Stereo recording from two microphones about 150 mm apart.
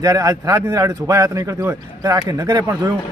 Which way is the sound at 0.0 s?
25° right (ahead or behind).